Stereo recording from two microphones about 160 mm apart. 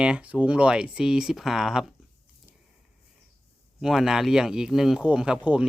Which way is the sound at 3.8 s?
5° right (ahead or behind).